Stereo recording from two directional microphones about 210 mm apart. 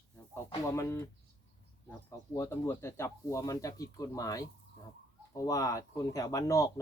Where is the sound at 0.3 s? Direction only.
15° left (ahead or behind).